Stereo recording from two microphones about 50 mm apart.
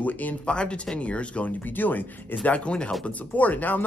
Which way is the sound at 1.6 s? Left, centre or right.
Left.